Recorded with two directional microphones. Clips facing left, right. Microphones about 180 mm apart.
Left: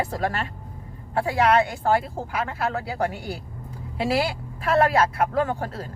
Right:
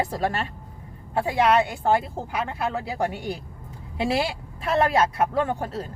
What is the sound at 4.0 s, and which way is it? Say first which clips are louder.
Speech: left 1 dB; 20° right (ahead or behind).